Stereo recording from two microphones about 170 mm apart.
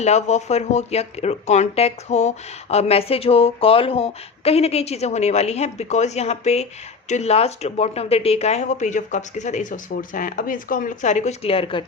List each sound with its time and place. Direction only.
0.0 s speech: 40° left (ahead or behind)